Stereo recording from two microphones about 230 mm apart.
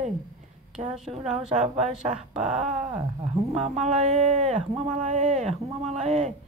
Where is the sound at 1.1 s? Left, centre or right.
Right.